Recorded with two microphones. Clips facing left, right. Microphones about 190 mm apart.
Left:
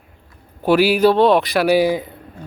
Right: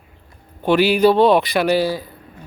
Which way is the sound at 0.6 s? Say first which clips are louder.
Left 1 dB; 5° left (ahead or behind).